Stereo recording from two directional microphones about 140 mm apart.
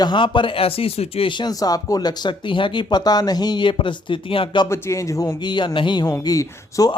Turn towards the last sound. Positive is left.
turn(degrees=25)  # may be behind; listen again after turning